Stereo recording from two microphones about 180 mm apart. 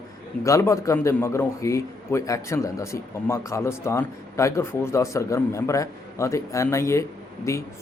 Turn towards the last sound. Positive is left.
turn(degrees=15)  # may be behind; listen again after turning